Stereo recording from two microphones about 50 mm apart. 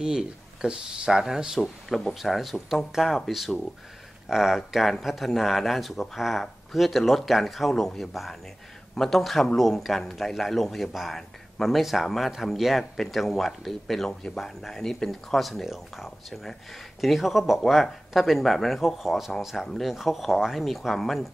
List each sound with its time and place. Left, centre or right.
0.0 s a man's voice: centre
4.6 s a man's voice: centre